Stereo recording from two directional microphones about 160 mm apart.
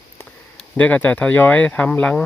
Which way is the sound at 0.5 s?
10° left (ahead or behind).